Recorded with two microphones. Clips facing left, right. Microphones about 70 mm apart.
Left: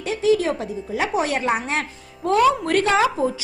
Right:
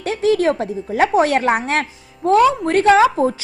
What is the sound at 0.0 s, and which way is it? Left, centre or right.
A woman's voice, right.